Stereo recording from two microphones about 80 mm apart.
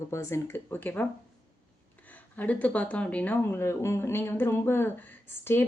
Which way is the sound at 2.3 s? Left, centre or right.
Left.